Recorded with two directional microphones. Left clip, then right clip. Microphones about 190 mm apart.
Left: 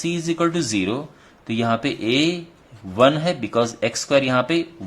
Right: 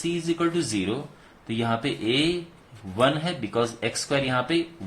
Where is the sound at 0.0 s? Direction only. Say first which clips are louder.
Left 4 dB; 40° left (ahead or behind).